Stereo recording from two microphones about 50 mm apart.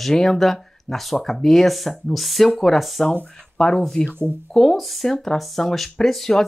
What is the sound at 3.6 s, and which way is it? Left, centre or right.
Speech, centre.